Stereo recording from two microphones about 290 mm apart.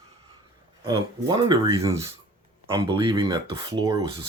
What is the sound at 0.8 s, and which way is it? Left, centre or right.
Speech, centre.